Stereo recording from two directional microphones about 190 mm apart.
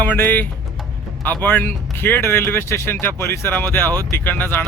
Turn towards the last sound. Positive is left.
turn(degrees=10)  # may be behind; listen again after turning